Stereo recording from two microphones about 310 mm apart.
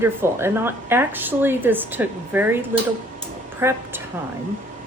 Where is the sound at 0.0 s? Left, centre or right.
Centre.